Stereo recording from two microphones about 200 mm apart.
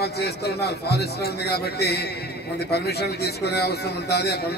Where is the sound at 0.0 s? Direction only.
55° left (ahead or behind).